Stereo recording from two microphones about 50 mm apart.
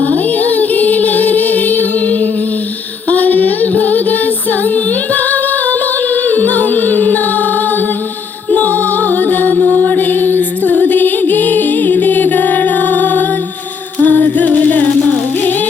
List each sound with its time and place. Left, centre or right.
0.0 s music: left
3.1 s female singing: left
4.6 s singing: left
6.2 s music: left
8.4 s music: left